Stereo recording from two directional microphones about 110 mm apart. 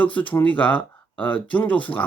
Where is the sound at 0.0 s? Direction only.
15° left (ahead or behind).